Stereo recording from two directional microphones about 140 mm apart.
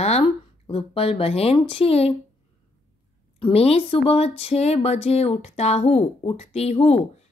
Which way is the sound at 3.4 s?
45° left (ahead or behind).